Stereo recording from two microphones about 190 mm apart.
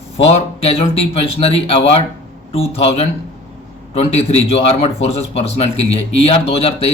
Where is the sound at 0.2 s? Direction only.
35° left (ahead or behind).